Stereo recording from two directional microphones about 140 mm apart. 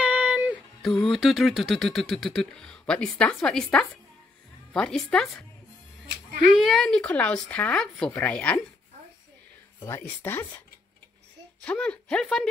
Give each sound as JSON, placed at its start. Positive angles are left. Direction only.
{"t": 0.0, "sound": "a sound", "side_deg": -10}
{"t": 0.8, "sound": "speech", "side_deg": 0}
{"t": 6.4, "sound": "speech", "side_deg": 0}
{"t": 9.8, "sound": "speech", "side_deg": 20}
{"t": 11.6, "sound": "speech", "side_deg": 10}